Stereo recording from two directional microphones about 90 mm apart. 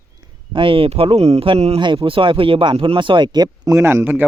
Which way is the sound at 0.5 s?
85° right.